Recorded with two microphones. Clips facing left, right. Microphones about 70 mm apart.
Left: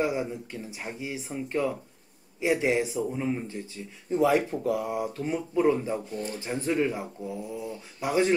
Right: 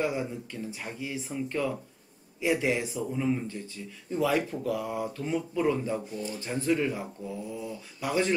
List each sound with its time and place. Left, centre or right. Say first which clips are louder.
0.0 s speech: left 2 dB; centre
6.1 s speech: left 2 dB; left
6.4 s speech: even; centre